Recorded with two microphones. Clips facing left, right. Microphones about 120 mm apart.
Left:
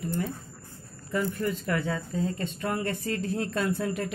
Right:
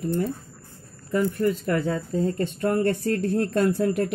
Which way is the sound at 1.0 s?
45° right (ahead or behind).